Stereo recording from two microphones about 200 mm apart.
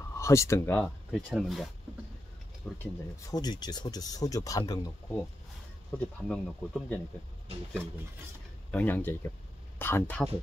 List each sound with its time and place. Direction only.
0.2 s speech: 15° left (ahead or behind)
2.8 s speech: 20° left (ahead or behind)
5.9 s speech: 5° left (ahead or behind)
8.7 s speech: 10° left (ahead or behind)